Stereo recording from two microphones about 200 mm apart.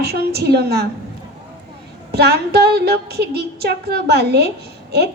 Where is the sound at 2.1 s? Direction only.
55° right (ahead or behind).